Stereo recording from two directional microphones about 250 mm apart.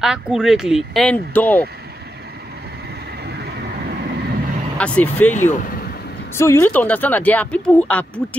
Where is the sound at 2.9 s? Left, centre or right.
Right.